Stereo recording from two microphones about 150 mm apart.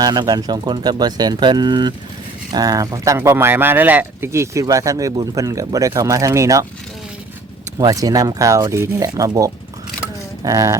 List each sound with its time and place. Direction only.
0.0 s speech: 25° right (ahead or behind)
7.8 s speech: 25° right (ahead or behind)